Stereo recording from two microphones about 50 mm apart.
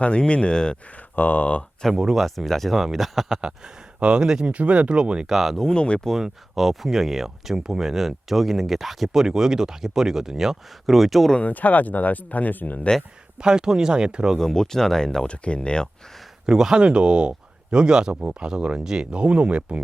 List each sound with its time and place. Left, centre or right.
0.0 s speech: left
0.9 s a sound: left
1.9 s speech: centre
4.5 s speech: right
5.3 s speech: centre
5.6 s speech: centre
6.2 s speech: centre
11.3 s speech: left
13.4 s speech: centre
14.3 s speech: centre
16.5 s speech: centre